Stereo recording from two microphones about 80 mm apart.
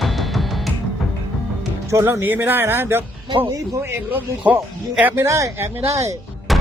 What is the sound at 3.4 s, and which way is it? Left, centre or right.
Speech, right.